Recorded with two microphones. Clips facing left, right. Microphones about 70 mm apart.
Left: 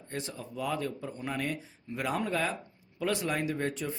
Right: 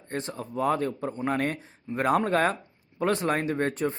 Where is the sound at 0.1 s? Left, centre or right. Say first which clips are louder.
Right 6 dB; right.